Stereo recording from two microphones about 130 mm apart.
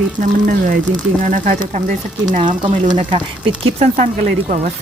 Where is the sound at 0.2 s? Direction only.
90° right.